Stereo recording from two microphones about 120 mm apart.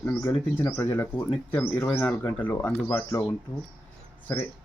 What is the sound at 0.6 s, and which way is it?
Speech, 20° left (ahead or behind).